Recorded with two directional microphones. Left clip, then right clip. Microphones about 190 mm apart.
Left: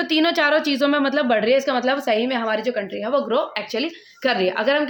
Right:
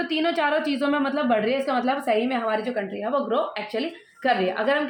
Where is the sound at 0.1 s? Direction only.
40° left (ahead or behind).